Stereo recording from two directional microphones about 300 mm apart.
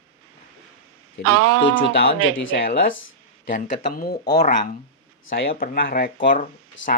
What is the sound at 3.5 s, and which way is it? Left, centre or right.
Speech, left.